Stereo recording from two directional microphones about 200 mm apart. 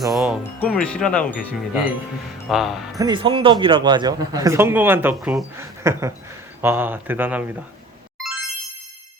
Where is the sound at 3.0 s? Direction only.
20° right (ahead or behind).